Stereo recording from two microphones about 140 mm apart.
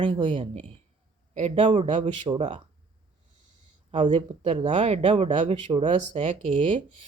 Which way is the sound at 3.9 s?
35° right (ahead or behind).